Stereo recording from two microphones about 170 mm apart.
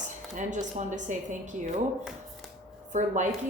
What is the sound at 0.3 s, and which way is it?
A woman's voice, 45° right (ahead or behind).